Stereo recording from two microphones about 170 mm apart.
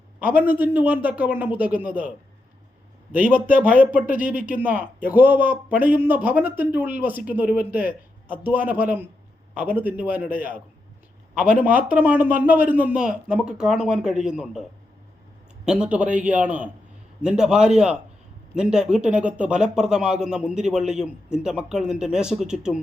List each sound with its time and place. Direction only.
0.2 s a man's voice: 10° right (ahead or behind)
3.1 s a man's voice: 10° right (ahead or behind)
4.0 s speech: 50° left (ahead or behind)
4.5 s a man's voice: 10° right (ahead or behind)